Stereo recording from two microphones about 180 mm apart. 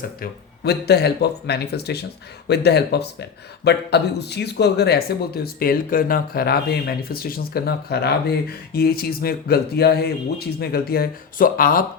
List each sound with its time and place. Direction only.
0.2 s speech: 65° left (ahead or behind)